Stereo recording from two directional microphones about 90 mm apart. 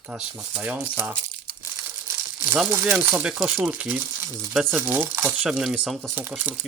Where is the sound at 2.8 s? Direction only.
25° right (ahead or behind).